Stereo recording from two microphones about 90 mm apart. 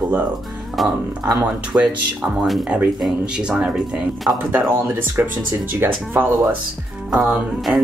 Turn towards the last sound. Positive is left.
turn(degrees=0)  # may be behind; listen again after turning